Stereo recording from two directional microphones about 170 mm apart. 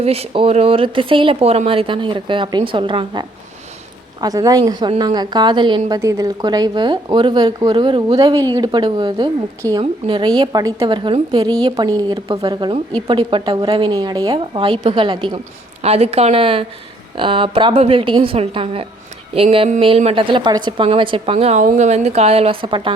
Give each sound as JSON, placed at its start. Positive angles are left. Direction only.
{"t": 0.0, "sound": "a woman's voice", "side_deg": -35}